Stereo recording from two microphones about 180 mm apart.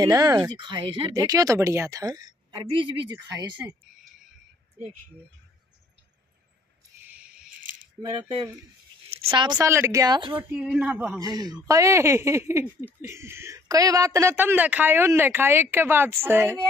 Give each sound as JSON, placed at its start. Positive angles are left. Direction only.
{"t": 0.0, "sound": "speech", "side_deg": -20}
{"t": 3.6, "sound": "speech", "side_deg": -10}
{"t": 7.1, "sound": "a sound", "side_deg": -10}
{"t": 8.0, "sound": "speech", "side_deg": 0}
{"t": 9.1, "sound": "speech", "side_deg": -30}
{"t": 10.3, "sound": "speech", "side_deg": -10}
{"t": 11.1, "sound": "speech", "side_deg": -20}